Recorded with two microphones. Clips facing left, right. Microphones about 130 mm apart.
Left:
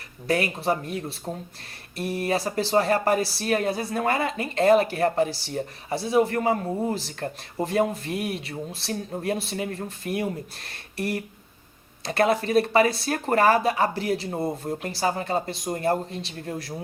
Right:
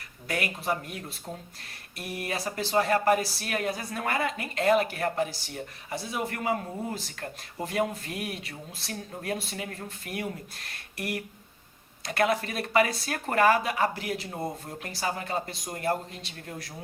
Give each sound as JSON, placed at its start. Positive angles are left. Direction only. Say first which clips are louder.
{"t": 0.3, "sound": "speech", "louder": "left 6 dB", "side_deg": 30}